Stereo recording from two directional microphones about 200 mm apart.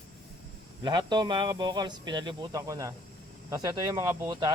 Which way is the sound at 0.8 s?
20° right (ahead or behind).